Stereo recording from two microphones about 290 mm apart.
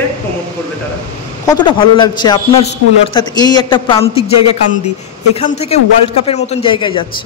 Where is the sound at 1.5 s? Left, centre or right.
Centre.